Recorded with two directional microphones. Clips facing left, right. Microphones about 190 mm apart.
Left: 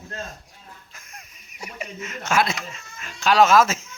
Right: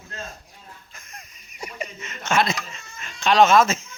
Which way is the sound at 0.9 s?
5° left (ahead or behind).